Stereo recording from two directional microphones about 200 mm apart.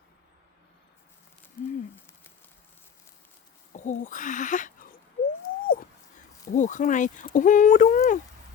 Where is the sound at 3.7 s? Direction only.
40° left (ahead or behind).